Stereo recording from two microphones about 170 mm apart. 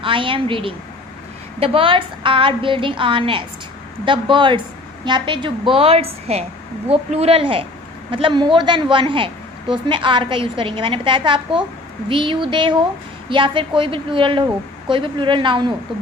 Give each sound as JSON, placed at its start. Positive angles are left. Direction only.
{"t": 0.0, "sound": "a woman's voice", "side_deg": -30}